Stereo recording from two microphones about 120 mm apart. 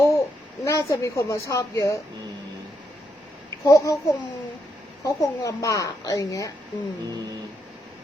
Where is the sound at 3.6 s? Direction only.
25° left (ahead or behind).